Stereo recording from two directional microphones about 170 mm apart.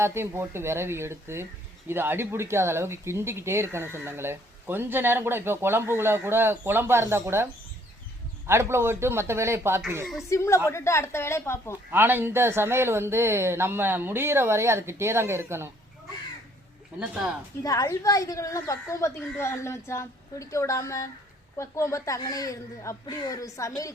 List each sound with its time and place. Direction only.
0.0 s speech: 15° right (ahead or behind)
8.4 s speech: 15° right (ahead or behind)
10.2 s speech: 15° left (ahead or behind)
11.9 s speech: 10° right (ahead or behind)
17.6 s speech: 20° left (ahead or behind)